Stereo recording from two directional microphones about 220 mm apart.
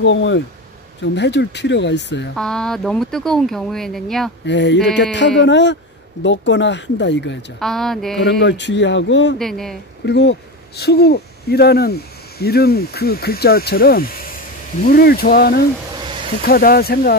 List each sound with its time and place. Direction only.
0.0 s speech: 60° left (ahead or behind)
2.3 s speech: 5° left (ahead or behind)
4.5 s speech: 55° left (ahead or behind)
7.6 s speech: centre (ahead or behind)
8.2 s speech: 50° left (ahead or behind)
9.4 s speech: centre (ahead or behind)
10.0 s speech: 50° left (ahead or behind)